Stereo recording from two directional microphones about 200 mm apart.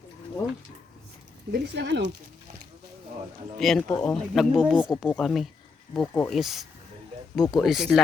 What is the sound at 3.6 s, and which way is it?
Speech, centre (ahead or behind).